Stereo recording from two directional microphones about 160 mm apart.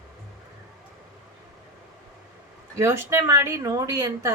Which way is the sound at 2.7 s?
15° right (ahead or behind).